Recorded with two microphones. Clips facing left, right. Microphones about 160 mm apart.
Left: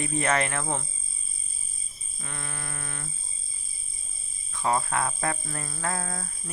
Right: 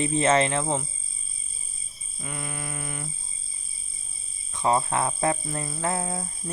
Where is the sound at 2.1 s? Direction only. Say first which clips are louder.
Right 4 dB; 10° right (ahead or behind).